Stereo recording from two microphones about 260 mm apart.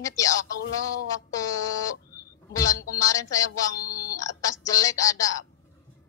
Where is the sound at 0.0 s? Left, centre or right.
Centre.